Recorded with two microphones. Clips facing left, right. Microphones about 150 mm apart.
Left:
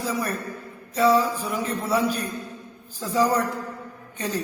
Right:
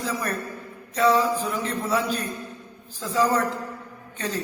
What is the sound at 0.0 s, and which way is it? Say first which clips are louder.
A man's voice: left 1 dB; 10° left (ahead or behind).